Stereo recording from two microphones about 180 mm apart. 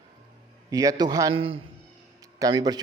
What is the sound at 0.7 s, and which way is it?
Speech, 20° right (ahead or behind).